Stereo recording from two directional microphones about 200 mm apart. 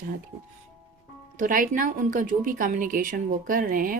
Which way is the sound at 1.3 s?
40° right (ahead or behind).